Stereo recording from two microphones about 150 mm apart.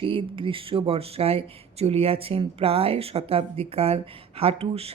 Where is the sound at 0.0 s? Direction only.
35° right (ahead or behind).